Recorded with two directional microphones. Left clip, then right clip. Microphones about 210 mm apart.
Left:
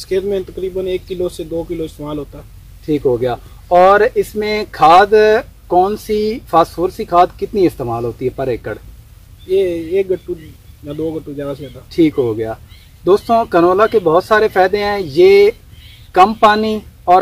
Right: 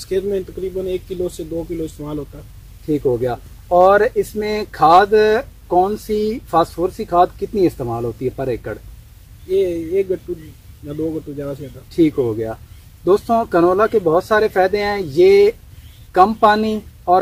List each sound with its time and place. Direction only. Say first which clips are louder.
0.0 s speech: left 3 dB; 10° right (ahead or behind)
11.9 s speech: left 3 dB; centre (ahead or behind)